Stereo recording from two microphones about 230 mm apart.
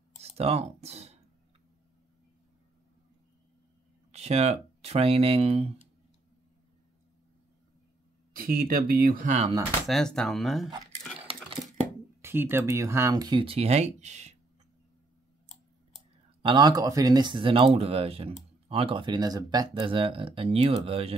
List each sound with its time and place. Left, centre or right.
0.2 s a sound: right
4.1 s speech: right
8.4 s speech: right
9.8 s speech: centre
12.2 s speech: centre; by 14.3 s right
15.4 s a sound: left
16.4 s speech: centre